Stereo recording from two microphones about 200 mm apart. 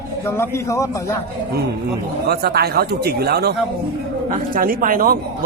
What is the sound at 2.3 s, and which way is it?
Speech, 55° right (ahead or behind).